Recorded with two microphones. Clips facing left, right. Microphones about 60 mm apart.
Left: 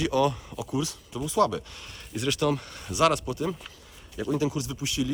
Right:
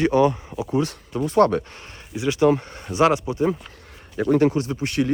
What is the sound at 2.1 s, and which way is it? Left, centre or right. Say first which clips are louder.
Speech: right 8 dB; right.